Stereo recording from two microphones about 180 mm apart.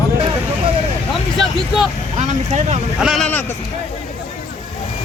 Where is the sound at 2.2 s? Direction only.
40° right (ahead or behind).